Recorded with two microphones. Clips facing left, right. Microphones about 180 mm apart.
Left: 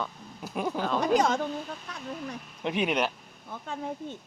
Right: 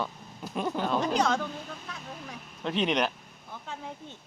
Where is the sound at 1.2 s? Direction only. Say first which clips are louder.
Left 1 dB; 50° left (ahead or behind).